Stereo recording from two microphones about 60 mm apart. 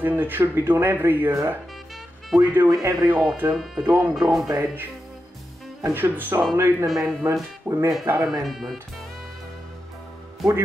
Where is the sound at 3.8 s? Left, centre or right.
Right.